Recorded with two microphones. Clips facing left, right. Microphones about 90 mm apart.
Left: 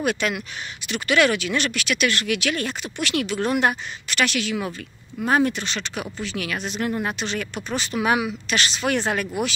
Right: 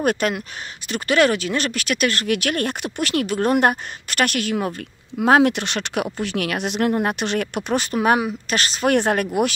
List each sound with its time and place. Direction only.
0.0 s speech: 45° right (ahead or behind)
5.2 s speech: 90° right; by 6.9 s 65° right (ahead or behind)
6.9 s speech: 55° right (ahead or behind)